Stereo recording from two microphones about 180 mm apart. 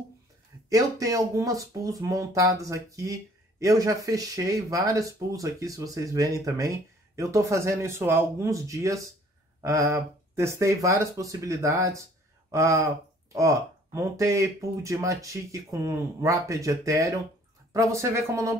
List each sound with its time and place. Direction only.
0.7 s speech: 20° right (ahead or behind)